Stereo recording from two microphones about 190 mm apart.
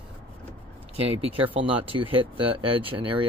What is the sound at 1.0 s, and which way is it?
Speech, 30° right (ahead or behind).